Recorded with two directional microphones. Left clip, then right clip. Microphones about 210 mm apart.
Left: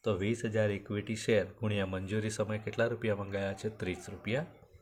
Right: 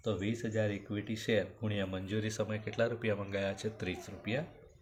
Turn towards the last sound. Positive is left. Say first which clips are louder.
# left 2 dB
turn(degrees=30)  # may be behind; listen again after turning